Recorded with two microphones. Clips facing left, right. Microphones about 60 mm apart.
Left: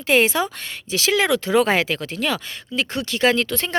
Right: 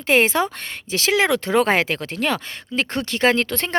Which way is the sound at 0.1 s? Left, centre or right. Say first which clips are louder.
Right 1 dB; right.